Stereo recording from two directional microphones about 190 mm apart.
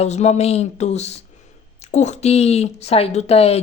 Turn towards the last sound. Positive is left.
turn(degrees=35)  # may be behind; listen again after turning